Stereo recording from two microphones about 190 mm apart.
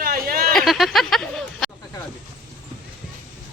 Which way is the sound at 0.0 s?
50° right (ahead or behind).